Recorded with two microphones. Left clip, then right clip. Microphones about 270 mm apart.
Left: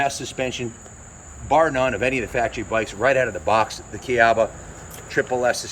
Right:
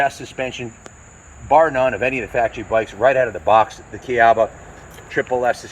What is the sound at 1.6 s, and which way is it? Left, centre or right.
Speech, centre.